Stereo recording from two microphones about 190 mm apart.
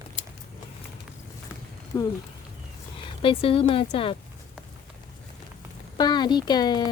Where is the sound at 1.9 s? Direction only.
15° left (ahead or behind).